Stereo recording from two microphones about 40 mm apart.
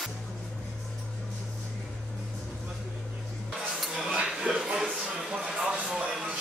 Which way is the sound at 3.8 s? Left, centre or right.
Centre.